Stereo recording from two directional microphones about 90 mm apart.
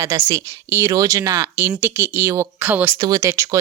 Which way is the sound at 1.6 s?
25° right (ahead or behind).